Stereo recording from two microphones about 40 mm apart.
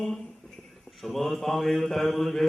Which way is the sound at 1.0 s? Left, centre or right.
Centre.